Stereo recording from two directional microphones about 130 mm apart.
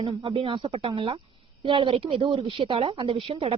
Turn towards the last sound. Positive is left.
turn(degrees=-45)  # may be behind; listen again after turning